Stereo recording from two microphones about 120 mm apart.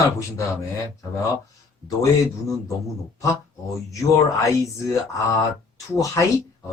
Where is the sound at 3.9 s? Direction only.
25° left (ahead or behind).